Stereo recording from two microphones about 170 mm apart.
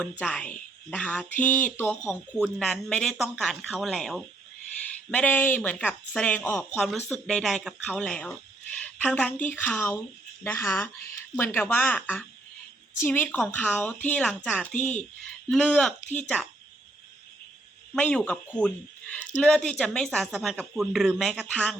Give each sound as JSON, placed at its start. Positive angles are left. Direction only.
{"t": 0.0, "sound": "speech", "side_deg": 5}
{"t": 16.0, "sound": "speech", "side_deg": 45}
{"t": 17.9, "sound": "speech", "side_deg": 5}